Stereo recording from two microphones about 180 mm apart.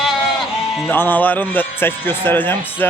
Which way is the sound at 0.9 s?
10° left (ahead or behind).